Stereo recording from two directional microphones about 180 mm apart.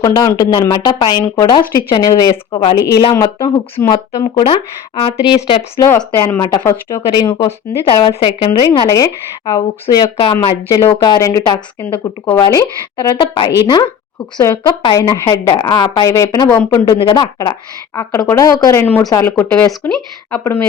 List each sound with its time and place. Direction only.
0.0 s speech: 20° left (ahead or behind)
5.7 s speech: 15° left (ahead or behind)
7.1 s speech: 25° left (ahead or behind)
16.8 s speech: 30° left (ahead or behind); by 20.6 s 10° left (ahead or behind)